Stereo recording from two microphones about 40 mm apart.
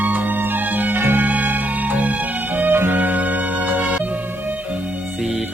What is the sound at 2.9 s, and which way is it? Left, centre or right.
Music, right.